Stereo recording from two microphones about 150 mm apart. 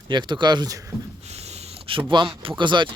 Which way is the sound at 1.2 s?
45° right (ahead or behind).